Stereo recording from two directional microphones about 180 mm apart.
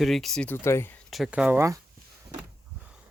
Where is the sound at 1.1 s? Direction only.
5° right (ahead or behind).